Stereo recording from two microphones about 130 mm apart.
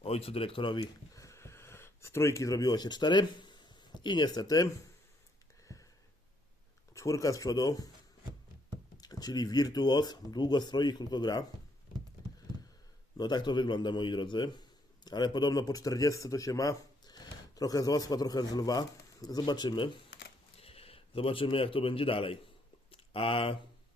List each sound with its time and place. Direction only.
0.0 s speech: 50° left (ahead or behind)
1.1 s a sound: 25° left (ahead or behind)
6.9 s speech: 25° left (ahead or behind)
9.0 s speech: 30° left (ahead or behind)
13.1 s speech: 35° left (ahead or behind)
20.6 s speech: 50° left (ahead or behind)
22.9 s a sound: 45° left (ahead or behind)